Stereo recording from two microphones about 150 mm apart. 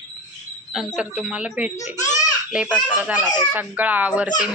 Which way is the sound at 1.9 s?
55° left (ahead or behind).